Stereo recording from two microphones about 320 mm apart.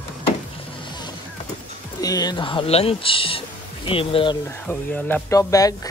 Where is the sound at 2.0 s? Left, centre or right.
Centre.